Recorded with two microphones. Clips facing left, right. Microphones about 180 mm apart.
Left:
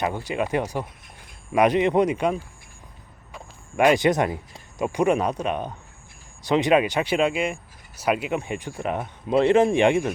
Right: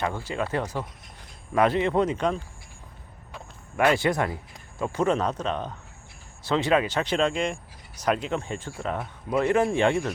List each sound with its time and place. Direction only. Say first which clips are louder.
0.0 s speech: left 3 dB; 15° left (ahead or behind)
3.8 s speech: left 4 dB; 20° left (ahead or behind)
9.3 s speech: left 5 dB; 25° left (ahead or behind)